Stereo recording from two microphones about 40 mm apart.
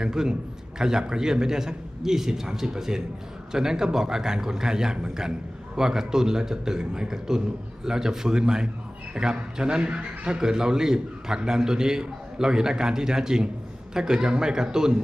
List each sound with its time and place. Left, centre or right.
0.0 s a man's voice: centre